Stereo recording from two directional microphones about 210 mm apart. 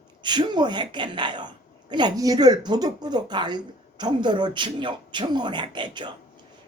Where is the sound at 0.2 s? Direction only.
20° right (ahead or behind).